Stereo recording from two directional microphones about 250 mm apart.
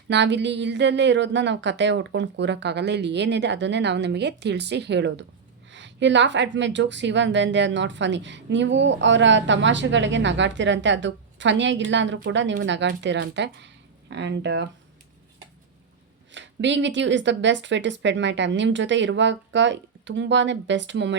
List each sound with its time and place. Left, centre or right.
0.1 s speech: right
16.3 s speech: right